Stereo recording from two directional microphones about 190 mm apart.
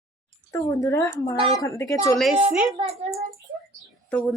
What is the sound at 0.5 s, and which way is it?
A woman's voice, 15° left (ahead or behind).